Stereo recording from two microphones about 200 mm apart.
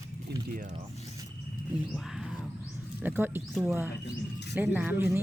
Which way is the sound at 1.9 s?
Centre (ahead or behind).